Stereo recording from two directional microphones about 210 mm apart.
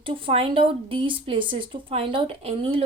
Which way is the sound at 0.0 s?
25° right (ahead or behind).